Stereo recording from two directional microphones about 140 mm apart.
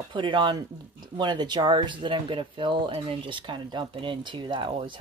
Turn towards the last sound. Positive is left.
turn(degrees=-35)  # may be behind; listen again after turning